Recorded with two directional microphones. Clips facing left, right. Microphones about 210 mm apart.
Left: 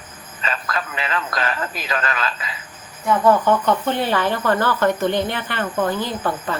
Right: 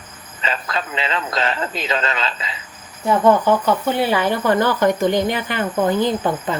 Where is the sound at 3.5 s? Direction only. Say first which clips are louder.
Right 1 dB; 10° right (ahead or behind).